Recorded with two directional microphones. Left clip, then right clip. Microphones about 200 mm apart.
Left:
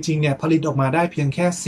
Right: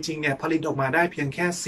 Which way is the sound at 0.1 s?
15° left (ahead or behind).